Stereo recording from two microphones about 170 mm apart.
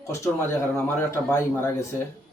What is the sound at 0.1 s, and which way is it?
A man's voice, 15° left (ahead or behind).